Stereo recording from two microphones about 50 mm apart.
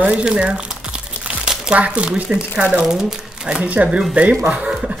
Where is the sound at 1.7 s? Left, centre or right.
Right.